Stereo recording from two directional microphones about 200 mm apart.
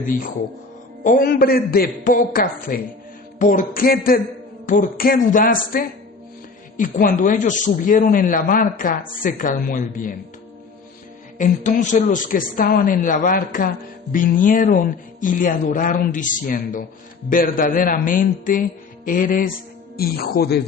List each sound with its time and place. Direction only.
1.0 s speech: 45° left (ahead or behind)
11.3 s speech: 40° left (ahead or behind)